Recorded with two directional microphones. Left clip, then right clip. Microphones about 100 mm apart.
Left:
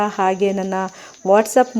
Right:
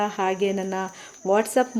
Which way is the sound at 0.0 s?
25° left (ahead or behind).